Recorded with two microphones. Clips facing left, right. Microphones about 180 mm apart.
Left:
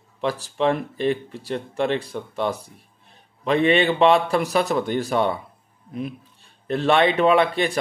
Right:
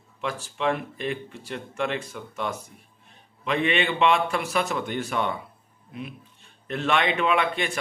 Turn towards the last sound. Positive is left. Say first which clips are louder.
# left 6 dB
turn(degrees=35)  # may be behind; listen again after turning